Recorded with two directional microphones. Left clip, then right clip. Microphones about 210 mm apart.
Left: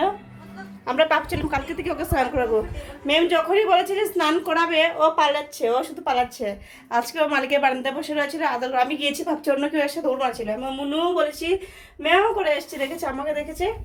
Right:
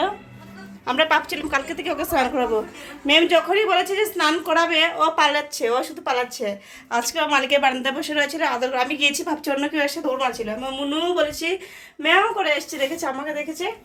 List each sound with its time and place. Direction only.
0.9 s a woman's voice: centre (ahead or behind)